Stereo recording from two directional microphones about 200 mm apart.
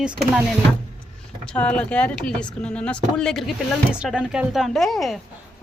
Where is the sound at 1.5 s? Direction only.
5° left (ahead or behind).